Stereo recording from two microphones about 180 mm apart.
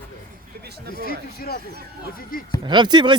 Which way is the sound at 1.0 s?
55° left (ahead or behind).